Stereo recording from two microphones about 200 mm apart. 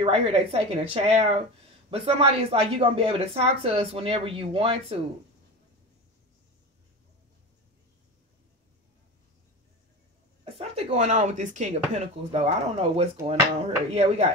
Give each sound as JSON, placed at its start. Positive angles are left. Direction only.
{"t": 0.0, "sound": "speech", "side_deg": -30}
{"t": 10.4, "sound": "speech", "side_deg": -30}